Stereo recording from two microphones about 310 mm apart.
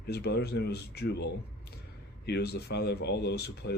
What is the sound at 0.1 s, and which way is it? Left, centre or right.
Speech, left.